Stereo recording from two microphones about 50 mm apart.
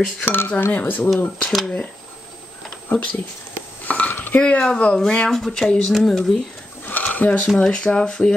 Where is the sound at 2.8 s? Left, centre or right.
Left.